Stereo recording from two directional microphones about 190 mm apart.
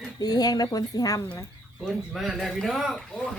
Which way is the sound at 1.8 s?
Centre (ahead or behind).